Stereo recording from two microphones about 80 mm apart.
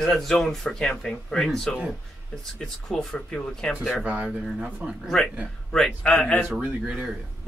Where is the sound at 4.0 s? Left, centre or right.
Centre.